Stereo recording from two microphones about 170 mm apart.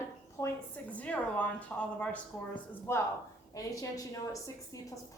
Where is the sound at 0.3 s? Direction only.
15° left (ahead or behind).